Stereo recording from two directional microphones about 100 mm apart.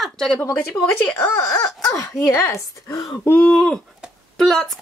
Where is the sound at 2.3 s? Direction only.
30° left (ahead or behind).